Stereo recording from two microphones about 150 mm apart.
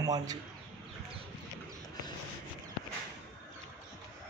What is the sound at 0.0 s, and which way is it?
Speech, 25° right (ahead or behind).